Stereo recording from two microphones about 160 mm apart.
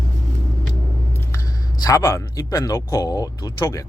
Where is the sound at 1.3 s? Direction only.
20° left (ahead or behind).